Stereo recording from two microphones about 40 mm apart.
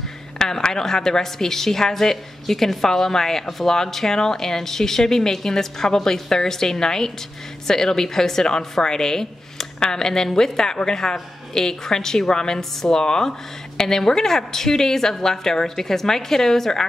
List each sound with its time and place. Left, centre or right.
0.4 s a woman's voice: centre